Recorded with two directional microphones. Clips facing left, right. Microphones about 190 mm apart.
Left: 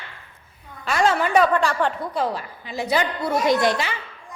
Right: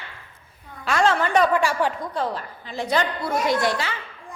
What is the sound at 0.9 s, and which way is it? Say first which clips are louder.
Speech: even; 10° left (ahead or behind).